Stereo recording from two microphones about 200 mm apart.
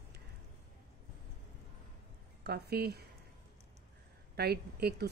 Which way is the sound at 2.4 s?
50° right (ahead or behind).